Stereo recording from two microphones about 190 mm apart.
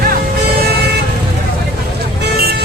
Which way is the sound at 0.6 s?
55° right (ahead or behind).